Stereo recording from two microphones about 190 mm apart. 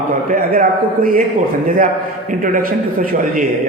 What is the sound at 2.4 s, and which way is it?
A man's voice, 50° right (ahead or behind).